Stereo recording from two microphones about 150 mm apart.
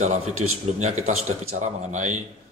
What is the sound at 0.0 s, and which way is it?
A man's voice, 50° right (ahead or behind).